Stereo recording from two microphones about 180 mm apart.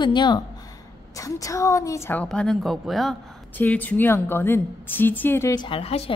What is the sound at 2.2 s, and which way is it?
A woman's voice, centre (ahead or behind).